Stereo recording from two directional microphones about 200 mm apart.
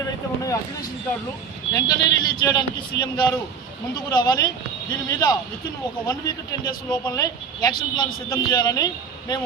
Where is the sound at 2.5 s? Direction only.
20° left (ahead or behind).